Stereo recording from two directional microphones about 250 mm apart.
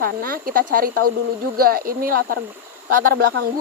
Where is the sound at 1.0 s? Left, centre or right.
Right.